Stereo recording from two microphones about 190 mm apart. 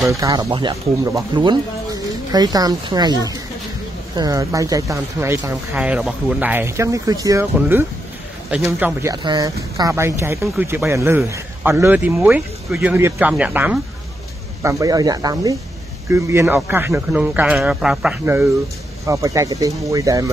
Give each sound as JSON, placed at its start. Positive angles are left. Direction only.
{"t": 0.1, "sound": "speech", "side_deg": -20}